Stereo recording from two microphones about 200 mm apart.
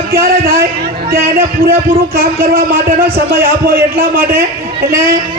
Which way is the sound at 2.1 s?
45° right (ahead or behind).